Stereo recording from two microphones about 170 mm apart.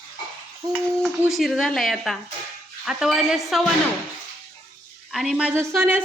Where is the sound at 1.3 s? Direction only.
Centre (ahead or behind).